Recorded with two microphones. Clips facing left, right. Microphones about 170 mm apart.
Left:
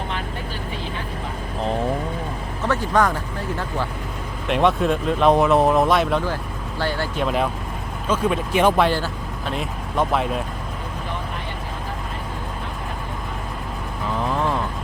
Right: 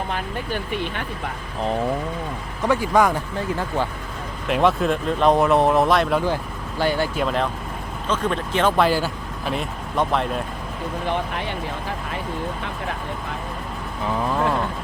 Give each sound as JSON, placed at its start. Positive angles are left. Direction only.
{"t": 0.1, "sound": "vehicle", "side_deg": -60}
{"t": 2.6, "sound": "speech", "side_deg": -10}
{"t": 4.4, "sound": "speech", "side_deg": 0}
{"t": 6.2, "sound": "speech", "side_deg": -15}
{"t": 7.2, "sound": "speech", "side_deg": 5}
{"t": 8.8, "sound": "speech", "side_deg": -5}
{"t": 14.2, "sound": "vehicle", "side_deg": 0}